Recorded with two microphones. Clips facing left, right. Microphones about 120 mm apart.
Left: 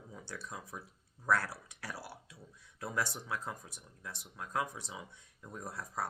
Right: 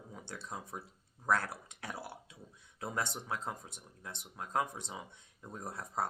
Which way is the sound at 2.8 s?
20° right (ahead or behind).